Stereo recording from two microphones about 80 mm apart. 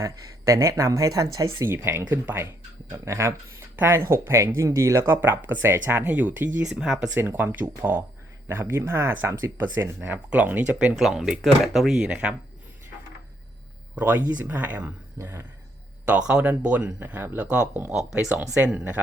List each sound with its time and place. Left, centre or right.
0.0 s speech: right
1.5 s speech: right
2.9 s speech: right
5.1 s speech: right
6.6 s speech: centre
7.2 s speech: right
10.9 s speech: centre
12.0 s speech: centre
13.9 s speech: centre
16.0 s speech: centre